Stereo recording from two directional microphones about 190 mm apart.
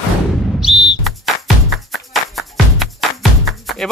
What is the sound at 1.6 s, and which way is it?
Music, centre (ahead or behind).